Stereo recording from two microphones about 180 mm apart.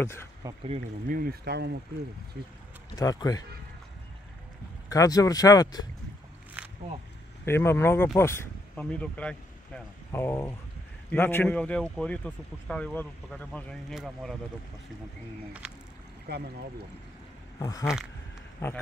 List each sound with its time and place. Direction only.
0.7 s speech: 50° right (ahead or behind); by 1.8 s 65° right (ahead or behind)
3.0 s speech: 20° left (ahead or behind)
4.8 s speech: 20° left (ahead or behind)
7.4 s a man's voice: 15° left (ahead or behind)
17.6 s a man's voice: 20° left (ahead or behind)